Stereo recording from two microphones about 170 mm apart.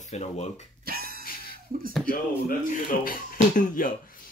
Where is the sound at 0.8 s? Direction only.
60° right (ahead or behind).